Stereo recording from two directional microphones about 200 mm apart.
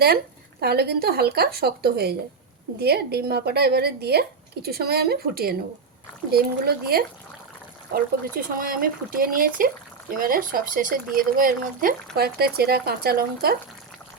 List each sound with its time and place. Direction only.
0.6 s speech: 50° right (ahead or behind)